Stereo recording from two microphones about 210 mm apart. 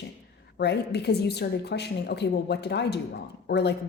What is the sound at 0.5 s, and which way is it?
A woman's voice, 55° left (ahead or behind).